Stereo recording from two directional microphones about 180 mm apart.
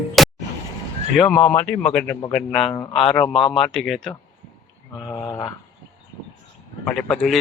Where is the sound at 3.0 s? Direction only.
5° left (ahead or behind).